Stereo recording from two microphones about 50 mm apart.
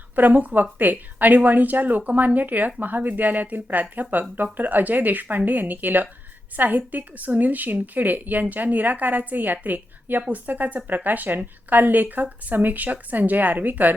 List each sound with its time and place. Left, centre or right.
0.2 s a woman's voice: right